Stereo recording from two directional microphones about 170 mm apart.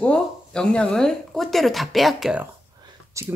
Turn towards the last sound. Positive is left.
turn(degrees=-15)  # may be behind; listen again after turning